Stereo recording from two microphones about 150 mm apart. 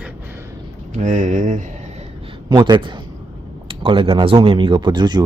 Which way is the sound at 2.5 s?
30° right (ahead or behind).